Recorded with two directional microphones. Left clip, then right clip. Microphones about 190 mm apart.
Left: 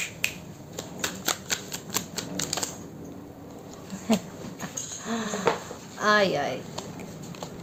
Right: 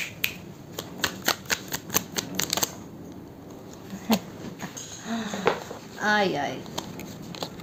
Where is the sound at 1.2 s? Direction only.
35° right (ahead or behind).